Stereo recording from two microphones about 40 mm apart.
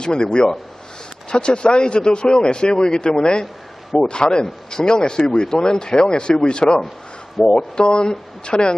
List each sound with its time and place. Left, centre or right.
0.0 s speech: left